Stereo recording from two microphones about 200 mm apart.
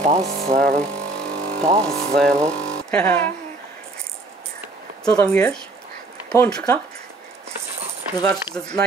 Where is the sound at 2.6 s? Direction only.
5° left (ahead or behind).